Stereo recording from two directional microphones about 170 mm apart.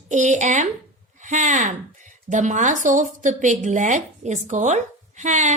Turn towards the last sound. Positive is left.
turn(degrees=-45)  # may be behind; listen again after turning